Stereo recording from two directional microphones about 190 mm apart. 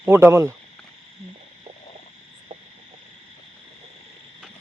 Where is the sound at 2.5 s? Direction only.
30° right (ahead or behind).